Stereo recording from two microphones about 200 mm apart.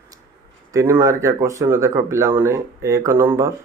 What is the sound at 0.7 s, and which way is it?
Speech, 15° right (ahead or behind).